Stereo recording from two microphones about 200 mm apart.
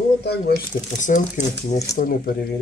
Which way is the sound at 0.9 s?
40° left (ahead or behind).